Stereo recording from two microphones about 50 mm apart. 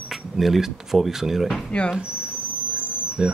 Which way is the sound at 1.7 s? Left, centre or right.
Left.